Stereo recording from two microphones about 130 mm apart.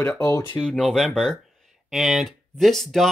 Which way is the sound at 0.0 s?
25° left (ahead or behind).